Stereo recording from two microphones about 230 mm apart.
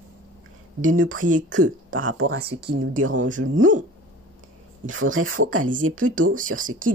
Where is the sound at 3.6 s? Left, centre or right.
Right.